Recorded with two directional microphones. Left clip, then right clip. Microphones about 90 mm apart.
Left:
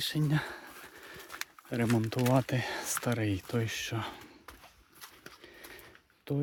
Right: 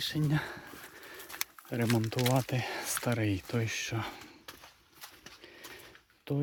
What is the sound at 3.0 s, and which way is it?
Speech, 20° left (ahead or behind).